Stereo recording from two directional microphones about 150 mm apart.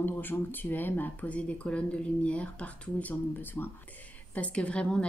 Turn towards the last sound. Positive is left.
turn(degrees=5)  # may be behind; listen again after turning